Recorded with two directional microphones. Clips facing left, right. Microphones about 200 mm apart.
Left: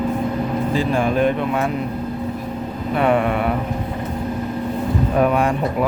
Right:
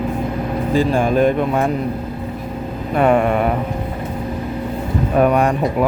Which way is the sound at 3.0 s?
45° right (ahead or behind).